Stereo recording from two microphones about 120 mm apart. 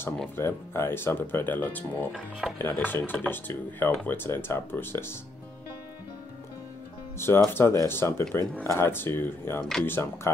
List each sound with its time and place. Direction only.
0.4 s speech: 20° left (ahead or behind)
7.2 s speech: 20° left (ahead or behind)
9.6 s speech: 5° left (ahead or behind)
9.8 s speech: 20° left (ahead or behind)